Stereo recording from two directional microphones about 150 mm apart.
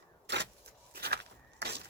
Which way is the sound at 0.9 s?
90° right.